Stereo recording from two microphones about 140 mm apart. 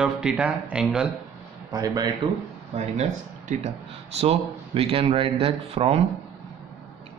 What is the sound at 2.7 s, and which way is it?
A man's voice, 50° right (ahead or behind).